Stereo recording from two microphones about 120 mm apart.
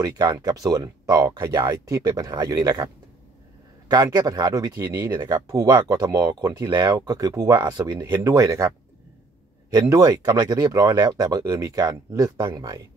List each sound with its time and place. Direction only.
0.0 s speech: 35° right (ahead or behind)
3.9 s speech: 35° right (ahead or behind)
4.8 s speech: 20° right (ahead or behind)
5.1 s speech: 35° right (ahead or behind)